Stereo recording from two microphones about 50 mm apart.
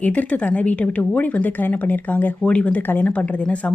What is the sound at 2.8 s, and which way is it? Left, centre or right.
Speech, left.